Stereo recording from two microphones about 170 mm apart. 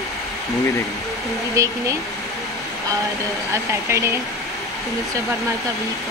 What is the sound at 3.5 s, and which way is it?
Speech, 15° right (ahead or behind).